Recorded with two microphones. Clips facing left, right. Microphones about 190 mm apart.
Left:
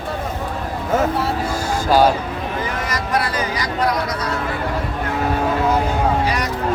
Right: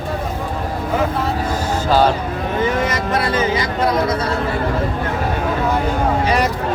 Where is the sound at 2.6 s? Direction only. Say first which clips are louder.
Right 6 dB; 25° right (ahead or behind).